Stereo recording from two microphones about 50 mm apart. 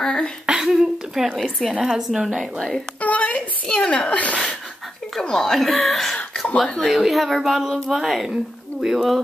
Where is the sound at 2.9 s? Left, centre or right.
Left.